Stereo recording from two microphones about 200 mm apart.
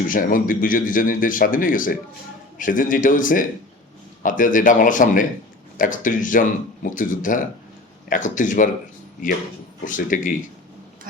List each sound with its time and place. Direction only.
0.1 s a man's voice: 45° left (ahead or behind)
9.8 s speech: 40° left (ahead or behind)